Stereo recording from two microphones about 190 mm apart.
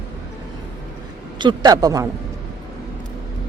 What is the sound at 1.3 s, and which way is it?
Speech, 25° right (ahead or behind).